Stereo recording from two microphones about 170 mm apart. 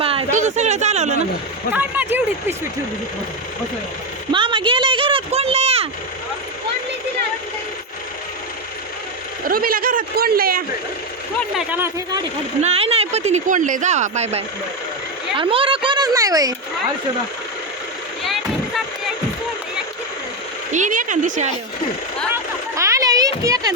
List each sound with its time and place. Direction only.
0.0 s a sound: 35° right (ahead or behind)
1.7 s speech: 10° right (ahead or behind)
4.3 s a sound: 30° right (ahead or behind)
9.5 s speech: 60° right (ahead or behind)
11.5 s speech: 10° right (ahead or behind)
12.6 s speech: 35° right (ahead or behind)
18.2 s vehicle: centre (ahead or behind)
20.7 s speech: 50° right (ahead or behind)
22.7 s a sound: 20° right (ahead or behind)